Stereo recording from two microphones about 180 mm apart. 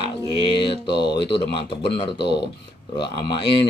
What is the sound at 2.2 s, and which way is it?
Speech, 70° left (ahead or behind).